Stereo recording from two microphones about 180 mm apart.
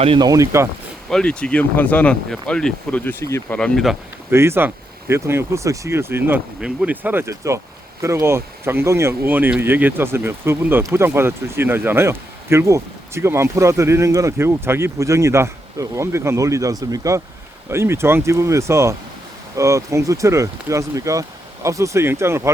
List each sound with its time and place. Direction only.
0.0 s speech: 25° right (ahead or behind)
1.1 s speech: 5° left (ahead or behind)
3.6 s speech: centre (ahead or behind)
4.3 s speech: 15° right (ahead or behind)